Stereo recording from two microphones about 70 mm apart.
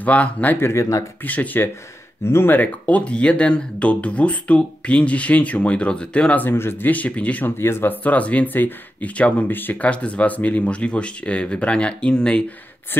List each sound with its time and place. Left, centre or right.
0.0 s speech: left
0.7 s speech: left
1.2 s speech: left
2.2 s speech: left
3.0 s speech: centre
6.4 s speech: left
6.9 s speech: left
7.5 s speech: left; by 12.4 s centre